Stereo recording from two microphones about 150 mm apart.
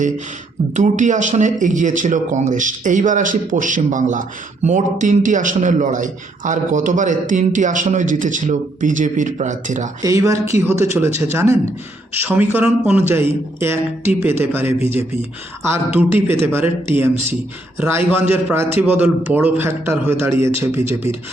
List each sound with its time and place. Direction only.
0.7 s a man's voice: 55° right (ahead or behind)
10.0 s a man's voice: 20° right (ahead or behind)